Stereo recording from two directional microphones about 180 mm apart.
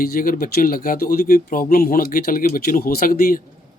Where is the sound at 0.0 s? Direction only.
50° left (ahead or behind).